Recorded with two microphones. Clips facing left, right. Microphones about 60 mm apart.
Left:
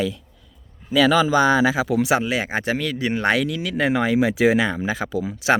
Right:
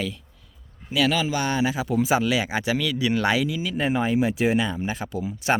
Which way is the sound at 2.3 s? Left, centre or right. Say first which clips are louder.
Left 1 dB; left.